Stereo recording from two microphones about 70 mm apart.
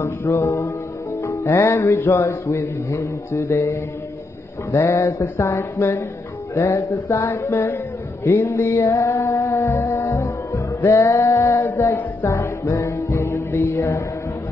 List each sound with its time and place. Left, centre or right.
0.2 s music: left
1.6 s mantra: left
2.2 s music: left
4.7 s mantra: left
6.5 s music: left
7.2 s a sound: left
8.3 s mantra: left
10.1 s music: left